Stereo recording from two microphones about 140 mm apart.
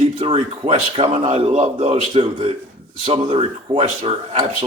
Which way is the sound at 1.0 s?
50° right (ahead or behind).